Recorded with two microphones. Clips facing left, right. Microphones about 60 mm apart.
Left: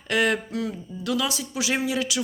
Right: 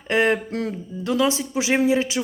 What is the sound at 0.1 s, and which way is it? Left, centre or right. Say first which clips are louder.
Speech: right 3 dB; right.